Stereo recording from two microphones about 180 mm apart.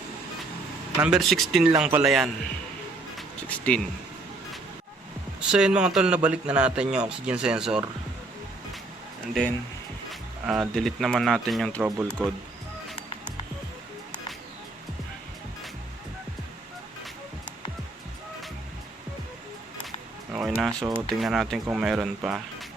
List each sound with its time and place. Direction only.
1.0 s a man's voice: centre (ahead or behind)
3.2 s music: 5° left (ahead or behind)
5.4 s a man's voice: 5° right (ahead or behind)
10.1 s speech: 5° right (ahead or behind)
11.8 s speech: 15° right (ahead or behind)
20.3 s music: centre (ahead or behind)
21.2 s a man's voice: centre (ahead or behind)